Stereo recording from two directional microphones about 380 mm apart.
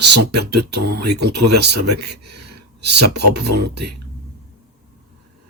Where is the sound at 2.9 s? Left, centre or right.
Right.